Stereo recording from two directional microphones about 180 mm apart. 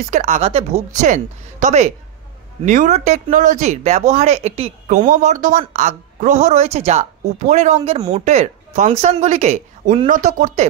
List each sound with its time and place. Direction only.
0.0 s speech: 40° right (ahead or behind)